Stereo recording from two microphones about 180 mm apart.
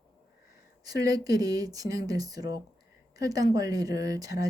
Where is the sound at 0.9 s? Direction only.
20° right (ahead or behind).